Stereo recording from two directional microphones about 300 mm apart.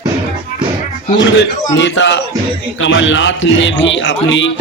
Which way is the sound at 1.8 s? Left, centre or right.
Left.